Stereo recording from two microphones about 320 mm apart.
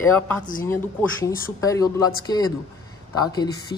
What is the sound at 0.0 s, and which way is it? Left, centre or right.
Speech, centre.